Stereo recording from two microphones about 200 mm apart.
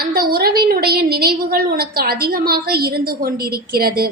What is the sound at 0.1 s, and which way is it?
A woman's voice, 50° right (ahead or behind).